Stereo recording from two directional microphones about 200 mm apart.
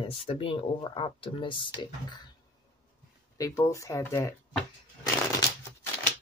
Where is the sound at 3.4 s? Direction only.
15° left (ahead or behind).